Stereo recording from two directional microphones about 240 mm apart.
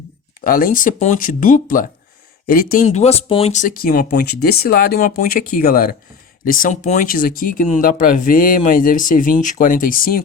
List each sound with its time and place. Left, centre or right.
0.4 s speech: left